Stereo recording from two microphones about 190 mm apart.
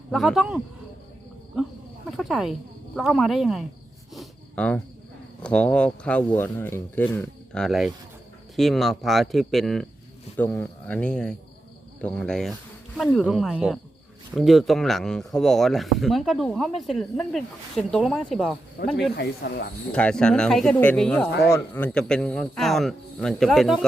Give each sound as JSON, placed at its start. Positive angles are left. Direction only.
{"t": 0.1, "sound": "speech", "side_deg": 0}
{"t": 1.5, "sound": "a sound", "side_deg": -5}
{"t": 2.0, "sound": "speech", "side_deg": 0}
{"t": 4.1, "sound": "a sound", "side_deg": 5}
{"t": 5.4, "sound": "speech", "side_deg": 5}
{"t": 18.8, "sound": "speech", "side_deg": 55}
{"t": 19.9, "sound": "speech", "side_deg": 5}